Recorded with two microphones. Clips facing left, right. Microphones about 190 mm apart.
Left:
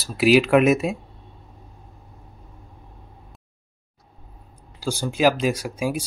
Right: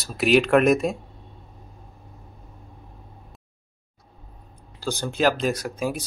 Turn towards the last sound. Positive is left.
turn(degrees=10)  # may be behind; listen again after turning